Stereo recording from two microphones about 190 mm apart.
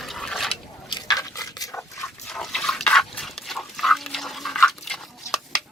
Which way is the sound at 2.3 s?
Centre (ahead or behind).